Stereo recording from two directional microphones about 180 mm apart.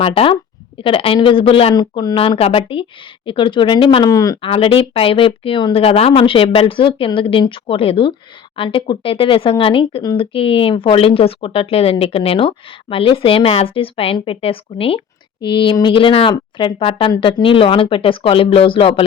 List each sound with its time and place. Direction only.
0.0 s a woman's voice: 35° left (ahead or behind)
4.4 s speech: 30° left (ahead or behind)